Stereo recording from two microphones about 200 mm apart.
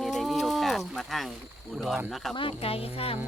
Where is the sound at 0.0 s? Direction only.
Centre (ahead or behind).